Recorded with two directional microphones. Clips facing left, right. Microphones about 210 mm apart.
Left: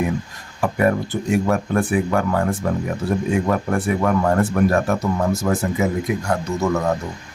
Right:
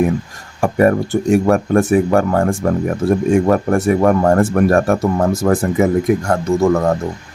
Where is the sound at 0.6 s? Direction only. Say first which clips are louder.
Right 5 dB; 45° right (ahead or behind).